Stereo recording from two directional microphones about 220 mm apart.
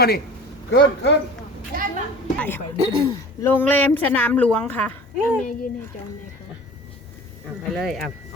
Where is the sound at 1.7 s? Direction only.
40° right (ahead or behind).